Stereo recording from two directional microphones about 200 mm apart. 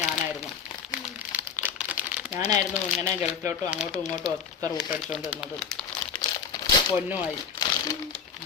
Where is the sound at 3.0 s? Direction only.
35° left (ahead or behind).